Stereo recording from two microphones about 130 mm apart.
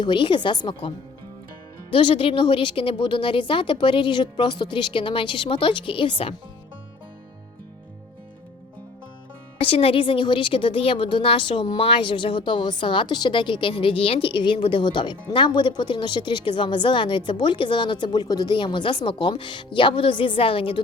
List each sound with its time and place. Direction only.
0.0 s a woman's voice: 35° left (ahead or behind)
9.6 s a woman's voice: 45° left (ahead or behind)